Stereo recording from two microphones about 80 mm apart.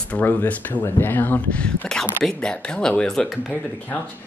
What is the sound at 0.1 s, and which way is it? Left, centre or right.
Speech, left.